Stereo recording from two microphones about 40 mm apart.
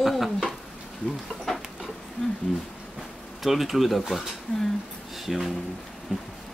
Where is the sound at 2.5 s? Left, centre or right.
Centre.